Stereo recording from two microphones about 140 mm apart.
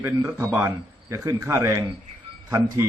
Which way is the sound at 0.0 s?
20° right (ahead or behind).